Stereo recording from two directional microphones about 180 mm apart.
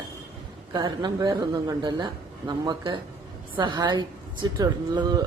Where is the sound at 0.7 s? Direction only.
25° right (ahead or behind).